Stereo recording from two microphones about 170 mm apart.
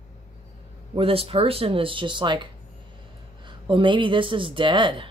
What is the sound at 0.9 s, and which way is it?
Speech, 35° right (ahead or behind).